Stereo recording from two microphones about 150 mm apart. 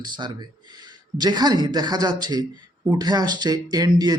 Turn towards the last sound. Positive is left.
turn(degrees=-25)  # may be behind; listen again after turning